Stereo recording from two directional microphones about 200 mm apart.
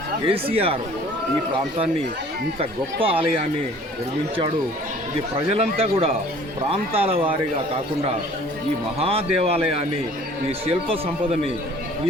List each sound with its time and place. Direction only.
0.3 s speech: 30° right (ahead or behind)
2.6 s speech: 30° right (ahead or behind)
5.5 s speech: 30° right (ahead or behind)
9.0 s speech: 30° right (ahead or behind)